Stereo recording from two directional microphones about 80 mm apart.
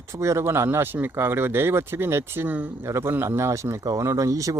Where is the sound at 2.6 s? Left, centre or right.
Centre.